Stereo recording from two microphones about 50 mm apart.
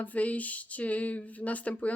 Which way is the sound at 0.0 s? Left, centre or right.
Left.